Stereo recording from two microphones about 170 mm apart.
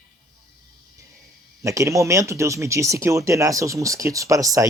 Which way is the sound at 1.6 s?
20° right (ahead or behind).